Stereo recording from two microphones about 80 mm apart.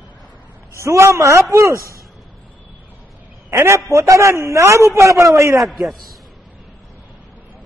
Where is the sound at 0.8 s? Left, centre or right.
Right.